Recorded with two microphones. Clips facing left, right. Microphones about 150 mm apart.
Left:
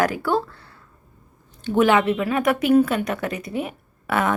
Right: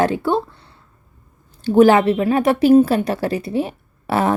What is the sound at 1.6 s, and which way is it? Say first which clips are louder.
A woman's voice: right 6 dB; 35° right (ahead or behind).